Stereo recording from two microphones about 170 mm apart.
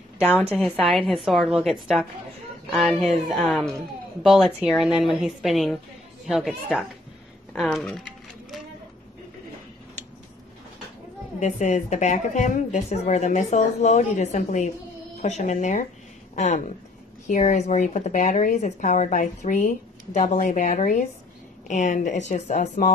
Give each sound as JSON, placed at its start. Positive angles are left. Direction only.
{"t": 0.2, "sound": "a woman's voice", "side_deg": 10}
{"t": 11.3, "sound": "speech", "side_deg": 45}